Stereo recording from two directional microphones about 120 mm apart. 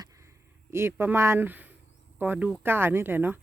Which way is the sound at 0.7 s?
20° right (ahead or behind).